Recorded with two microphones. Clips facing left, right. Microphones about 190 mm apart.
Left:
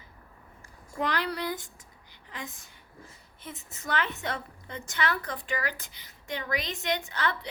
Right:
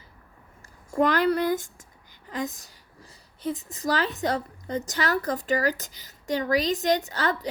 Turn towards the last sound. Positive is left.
turn(degrees=-40)  # may be behind; listen again after turning